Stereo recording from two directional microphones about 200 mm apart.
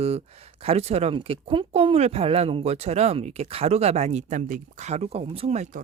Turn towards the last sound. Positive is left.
turn(degrees=-35)  # may be behind; listen again after turning